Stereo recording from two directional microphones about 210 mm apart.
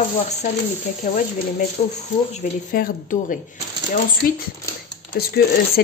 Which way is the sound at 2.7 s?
40° left (ahead or behind).